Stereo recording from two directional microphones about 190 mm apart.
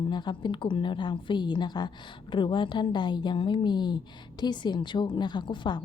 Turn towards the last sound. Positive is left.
turn(degrees=25)  # may be behind; listen again after turning